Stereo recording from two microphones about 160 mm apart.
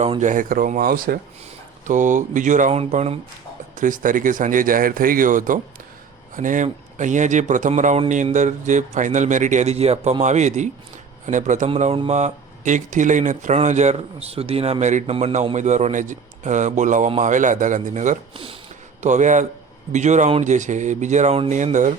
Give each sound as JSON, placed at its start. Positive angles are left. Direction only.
{"t": 0.2, "sound": "speech", "side_deg": -55}
{"t": 1.9, "sound": "speech", "side_deg": -50}
{"t": 3.8, "sound": "speech", "side_deg": -55}